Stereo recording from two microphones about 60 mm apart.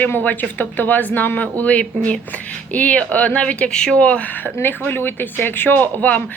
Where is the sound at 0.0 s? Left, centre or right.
Left.